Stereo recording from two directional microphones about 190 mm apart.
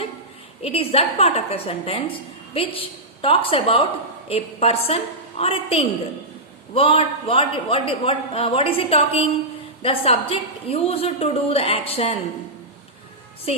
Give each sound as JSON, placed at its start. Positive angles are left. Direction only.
{"t": 0.6, "sound": "a woman's voice", "side_deg": 30}